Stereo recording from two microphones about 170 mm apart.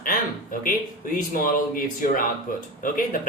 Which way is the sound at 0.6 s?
55° left (ahead or behind).